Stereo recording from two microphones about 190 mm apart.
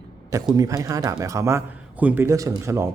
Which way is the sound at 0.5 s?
20° right (ahead or behind).